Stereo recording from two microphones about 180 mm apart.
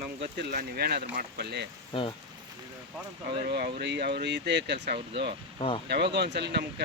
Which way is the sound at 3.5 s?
60° right (ahead or behind).